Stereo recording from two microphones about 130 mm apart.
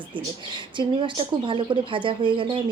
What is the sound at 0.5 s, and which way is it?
Speech, 40° right (ahead or behind).